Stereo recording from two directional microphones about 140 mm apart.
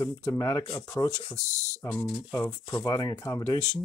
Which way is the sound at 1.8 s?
25° left (ahead or behind).